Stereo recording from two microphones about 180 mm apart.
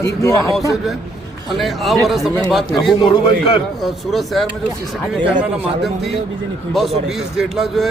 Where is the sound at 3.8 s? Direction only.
Centre (ahead or behind).